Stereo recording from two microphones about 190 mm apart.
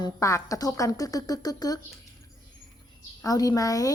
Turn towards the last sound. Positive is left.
turn(degrees=20)  # may be behind; listen again after turning